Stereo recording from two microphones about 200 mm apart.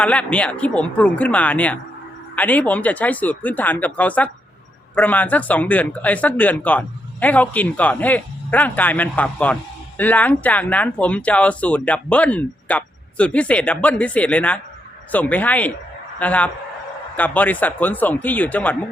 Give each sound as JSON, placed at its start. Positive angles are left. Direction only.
{"t": 0.0, "sound": "speech", "side_deg": 5}